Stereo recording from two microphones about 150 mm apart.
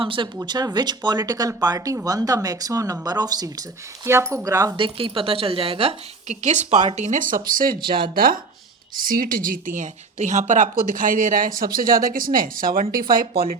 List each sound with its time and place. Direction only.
0.0 s speech: 35° right (ahead or behind)
4.8 s speech: 35° right (ahead or behind)
6.2 s speech: 50° right (ahead or behind); by 7.8 s 70° right (ahead or behind)
7.8 s speech: 35° right (ahead or behind)
8.1 s speech: 75° right (ahead or behind)